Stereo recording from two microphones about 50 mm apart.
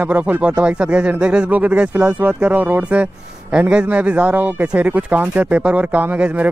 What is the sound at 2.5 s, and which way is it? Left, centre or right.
Speech, right.